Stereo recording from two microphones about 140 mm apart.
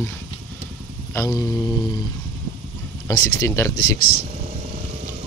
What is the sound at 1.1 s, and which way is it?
Speech, 25° left (ahead or behind).